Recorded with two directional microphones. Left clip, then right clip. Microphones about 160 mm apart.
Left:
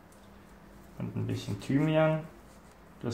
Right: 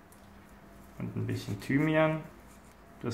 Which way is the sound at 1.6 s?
20° left (ahead or behind).